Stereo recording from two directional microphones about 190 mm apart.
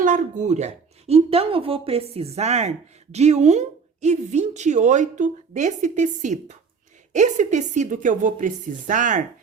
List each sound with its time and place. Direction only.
0.0 s speech: 40° right (ahead or behind)